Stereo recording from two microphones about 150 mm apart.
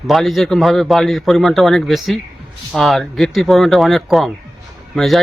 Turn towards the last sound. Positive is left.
turn(degrees=0)  # may be behind; listen again after turning